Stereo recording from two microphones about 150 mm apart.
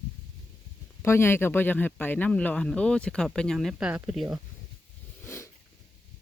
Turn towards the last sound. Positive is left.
turn(degrees=15)  # may be behind; listen again after turning